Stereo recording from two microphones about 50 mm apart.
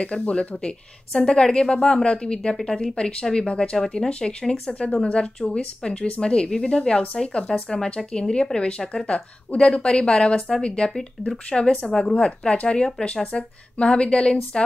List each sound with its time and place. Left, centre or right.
0.2 s speech: left